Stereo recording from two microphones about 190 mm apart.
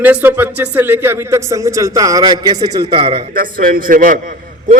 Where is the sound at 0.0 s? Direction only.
10° right (ahead or behind); by 3.2 s 30° right (ahead or behind).